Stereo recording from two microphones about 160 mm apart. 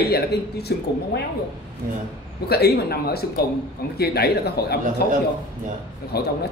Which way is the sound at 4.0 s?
90° left.